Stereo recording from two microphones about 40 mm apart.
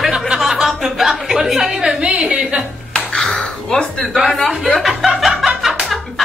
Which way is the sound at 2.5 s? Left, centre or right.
Right.